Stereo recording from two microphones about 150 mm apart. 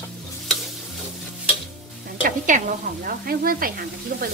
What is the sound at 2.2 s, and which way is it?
Speech, 60° right (ahead or behind).